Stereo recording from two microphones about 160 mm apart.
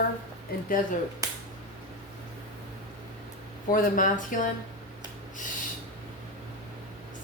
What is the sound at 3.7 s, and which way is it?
Speech, 55° left (ahead or behind).